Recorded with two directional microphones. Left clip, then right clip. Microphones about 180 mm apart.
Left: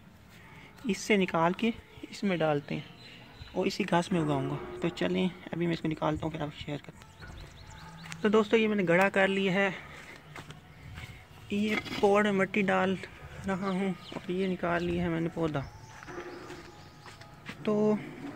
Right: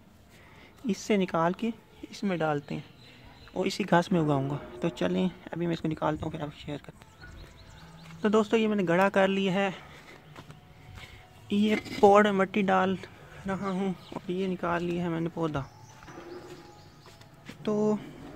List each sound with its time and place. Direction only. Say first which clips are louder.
0.8 s speech: even; 5° right (ahead or behind)
3.5 s speech: right 3 dB; 25° right (ahead or behind); by 6.8 s 10° right (ahead or behind)
8.2 s speech: even; 5° right (ahead or behind)
11.4 s speech: right 3 dB; 30° right (ahead or behind); by 15.6 s 10° right (ahead or behind)
17.6 s speech: even; 10° right (ahead or behind)